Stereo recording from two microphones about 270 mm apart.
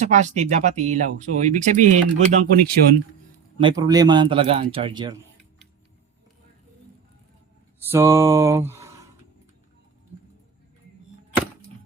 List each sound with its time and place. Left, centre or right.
0.0 s speech: right
3.6 s a man's voice: centre
7.8 s mantra: centre